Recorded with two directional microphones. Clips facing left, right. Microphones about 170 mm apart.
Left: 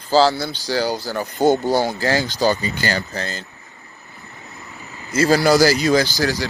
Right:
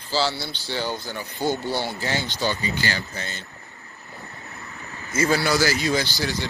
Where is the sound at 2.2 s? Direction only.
40° left (ahead or behind).